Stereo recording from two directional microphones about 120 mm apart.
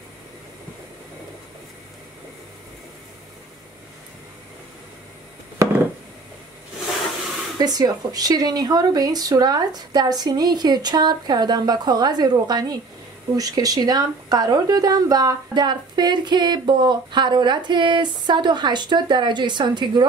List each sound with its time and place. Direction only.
7.5 s speech: 35° right (ahead or behind)